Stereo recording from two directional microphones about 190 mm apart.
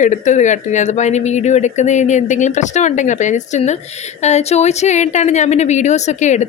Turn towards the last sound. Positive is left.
turn(degrees=35)  # may be behind; listen again after turning